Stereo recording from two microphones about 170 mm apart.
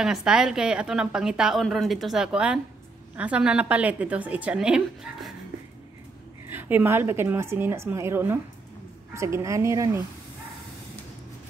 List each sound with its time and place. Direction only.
0.0 s a woman's voice: 5° right (ahead or behind)
6.5 s a woman's voice: 10° right (ahead or behind)